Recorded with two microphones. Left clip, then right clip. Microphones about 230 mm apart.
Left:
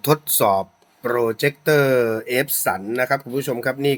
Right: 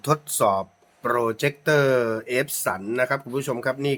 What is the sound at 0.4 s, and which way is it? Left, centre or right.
Speech, centre.